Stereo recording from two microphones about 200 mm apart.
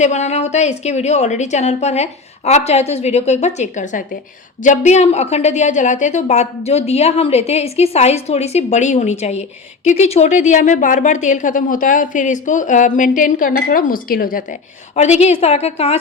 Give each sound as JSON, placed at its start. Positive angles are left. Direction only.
{"t": 0.0, "sound": "speech", "side_deg": 35}